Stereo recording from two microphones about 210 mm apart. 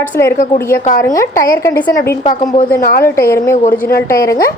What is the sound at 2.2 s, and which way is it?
Speech, 25° left (ahead or behind).